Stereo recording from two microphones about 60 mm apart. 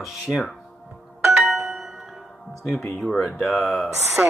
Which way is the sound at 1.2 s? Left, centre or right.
Centre.